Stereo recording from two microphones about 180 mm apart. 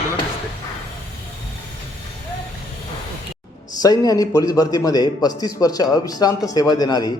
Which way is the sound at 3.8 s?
20° left (ahead or behind).